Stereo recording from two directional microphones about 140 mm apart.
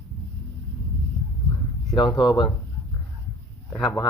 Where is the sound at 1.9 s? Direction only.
30° left (ahead or behind).